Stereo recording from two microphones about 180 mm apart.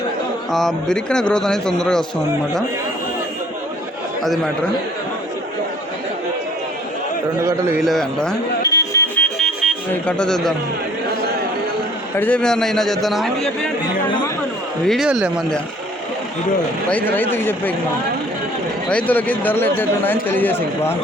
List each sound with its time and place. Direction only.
0.5 s a man's voice: centre (ahead or behind)
4.2 s a man's voice: centre (ahead or behind)
7.9 s a man's voice: 5° left (ahead or behind)
8.6 s vehicle: 15° left (ahead or behind)
10.1 s a man's voice: 5° left (ahead or behind)
12.1 s a man's voice: 10° left (ahead or behind)
14.8 s a man's voice: centre (ahead or behind)
16.9 s speech: 10° left (ahead or behind)
18.9 s speech: 10° left (ahead or behind)